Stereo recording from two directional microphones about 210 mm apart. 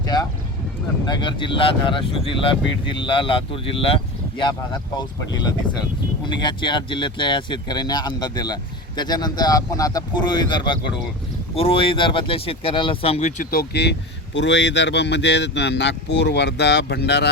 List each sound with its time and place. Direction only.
0.0 s boat: 15° left (ahead or behind)
1.0 s speech: 20° left (ahead or behind); by 17.2 s 55° left (ahead or behind)